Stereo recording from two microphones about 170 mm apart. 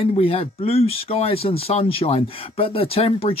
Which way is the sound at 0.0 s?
35° left (ahead or behind).